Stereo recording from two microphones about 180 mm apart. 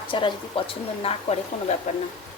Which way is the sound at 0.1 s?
25° left (ahead or behind).